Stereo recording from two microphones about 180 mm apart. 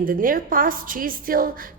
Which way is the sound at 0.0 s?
50° right (ahead or behind).